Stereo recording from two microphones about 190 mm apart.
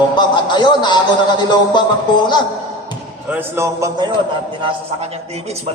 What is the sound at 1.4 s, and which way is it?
Music, 25° left (ahead or behind).